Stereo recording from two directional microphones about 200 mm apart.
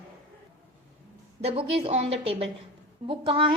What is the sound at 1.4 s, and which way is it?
A woman's voice, 30° right (ahead or behind).